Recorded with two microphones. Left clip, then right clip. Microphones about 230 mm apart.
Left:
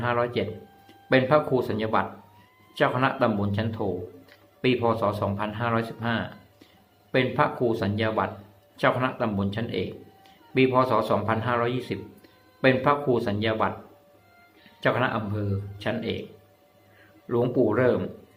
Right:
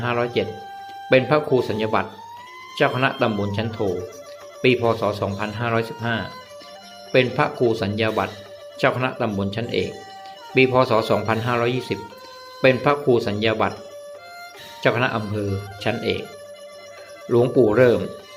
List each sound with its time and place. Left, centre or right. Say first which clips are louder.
0.0 s speech: right 3 dB; centre
14.8 s speech: right 4 dB; centre
17.2 s speech: right 7 dB; centre